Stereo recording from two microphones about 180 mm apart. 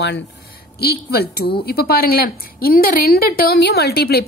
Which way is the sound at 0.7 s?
60° left (ahead or behind).